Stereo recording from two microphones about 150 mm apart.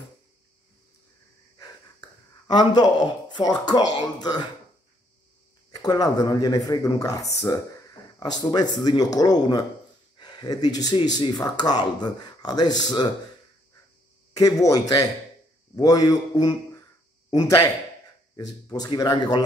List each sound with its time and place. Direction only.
1.6 s speech: 30° left (ahead or behind)
5.7 s speech: 25° left (ahead or behind)
14.3 s a man's voice: 25° left (ahead or behind)
18.3 s speech: 25° left (ahead or behind)